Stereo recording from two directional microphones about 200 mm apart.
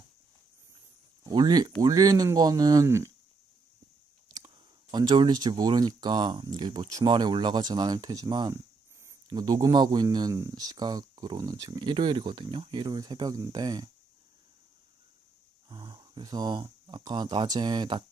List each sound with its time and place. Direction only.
1.2 s speech: 20° right (ahead or behind)
4.4 s speech: 20° right (ahead or behind)
15.7 s speech: 20° right (ahead or behind)